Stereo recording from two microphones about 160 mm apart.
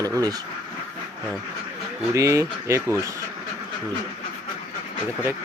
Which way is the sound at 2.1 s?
20° right (ahead or behind).